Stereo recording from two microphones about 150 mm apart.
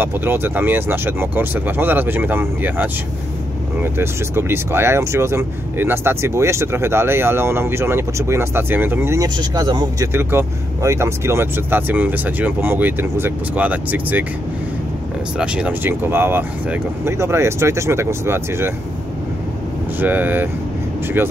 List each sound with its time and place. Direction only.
0.0 s speech: 15° right (ahead or behind)
15.3 s speech: 5° right (ahead or behind)
20.0 s speech: 10° right (ahead or behind)